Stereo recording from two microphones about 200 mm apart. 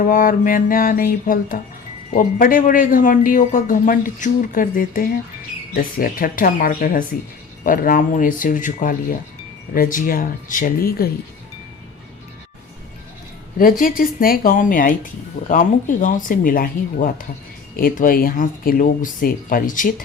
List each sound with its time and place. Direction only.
0.0 s speech: 40° left (ahead or behind)
13.6 s speech: 45° left (ahead or behind)